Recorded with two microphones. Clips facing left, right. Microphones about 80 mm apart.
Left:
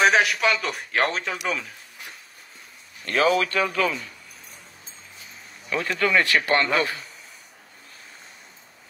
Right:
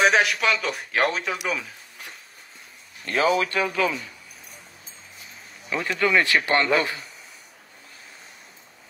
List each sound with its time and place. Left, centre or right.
0.0 s speech: centre
3.1 s speech: right
5.9 s speech: right